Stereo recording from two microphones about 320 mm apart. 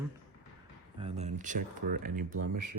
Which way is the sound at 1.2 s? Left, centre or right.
Right.